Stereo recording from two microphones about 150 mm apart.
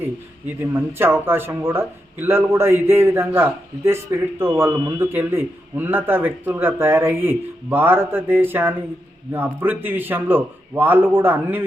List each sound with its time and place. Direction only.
0.6 s speech: 15° right (ahead or behind)